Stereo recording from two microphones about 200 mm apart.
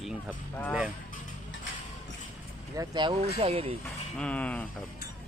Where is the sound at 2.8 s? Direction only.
20° right (ahead or behind).